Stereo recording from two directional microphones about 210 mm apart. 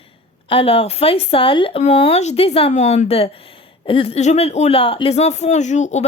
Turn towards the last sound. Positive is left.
turn(degrees=35)  # may be behind; listen again after turning